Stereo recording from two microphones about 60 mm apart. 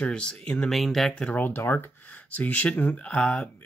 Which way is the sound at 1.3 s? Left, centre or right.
Left.